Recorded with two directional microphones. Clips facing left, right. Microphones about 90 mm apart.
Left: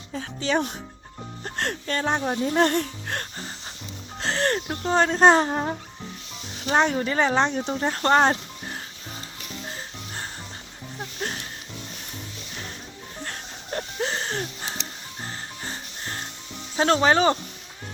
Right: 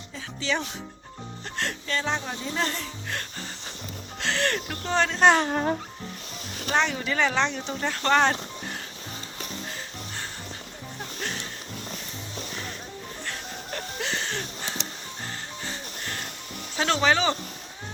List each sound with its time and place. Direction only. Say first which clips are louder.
0.1 s speech: left 4 dB; 45° left (ahead or behind)
4.2 s speech: left 2 dB; 35° left (ahead or behind)
5.5 s speech: right 1 dB; 20° left (ahead or behind)
6.7 s speech: left 4 dB; 40° left (ahead or behind)
9.6 s music: left 1 dB; 35° left (ahead or behind)
13.2 s music: left 1 dB; 40° left (ahead or behind)
15.6 s music: even; 40° left (ahead or behind)
16.7 s speech: left 4 dB; 40° left (ahead or behind)